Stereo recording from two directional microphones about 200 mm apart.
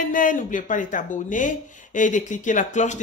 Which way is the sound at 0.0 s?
40° left (ahead or behind).